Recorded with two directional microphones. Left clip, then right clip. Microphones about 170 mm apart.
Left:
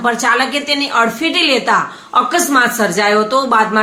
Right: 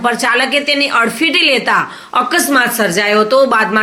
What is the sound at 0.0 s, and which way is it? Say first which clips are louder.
A woman's voice: right 1 dB; 10° right (ahead or behind).